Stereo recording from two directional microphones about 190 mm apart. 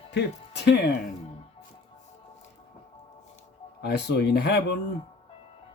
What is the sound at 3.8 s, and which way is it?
Speech, 60° left (ahead or behind).